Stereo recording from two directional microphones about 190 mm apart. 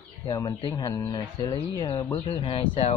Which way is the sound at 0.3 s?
20° left (ahead or behind).